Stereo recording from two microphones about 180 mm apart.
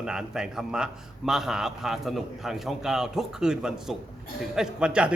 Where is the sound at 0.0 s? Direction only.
5° right (ahead or behind).